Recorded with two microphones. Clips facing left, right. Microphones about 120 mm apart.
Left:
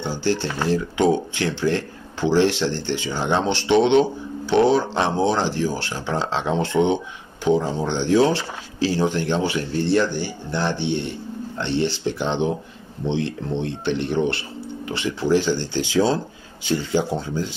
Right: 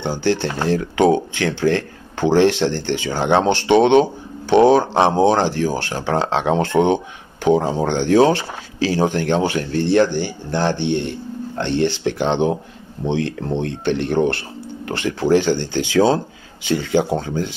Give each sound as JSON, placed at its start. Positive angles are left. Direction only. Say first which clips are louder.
{"t": 0.0, "sound": "speech", "louder": "right 3 dB", "side_deg": -55}